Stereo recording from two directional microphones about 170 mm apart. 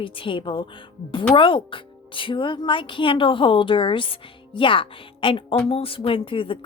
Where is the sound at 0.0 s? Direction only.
30° left (ahead or behind).